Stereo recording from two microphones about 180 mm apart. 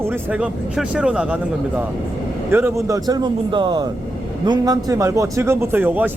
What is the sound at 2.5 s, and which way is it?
A man's voice, 15° right (ahead or behind).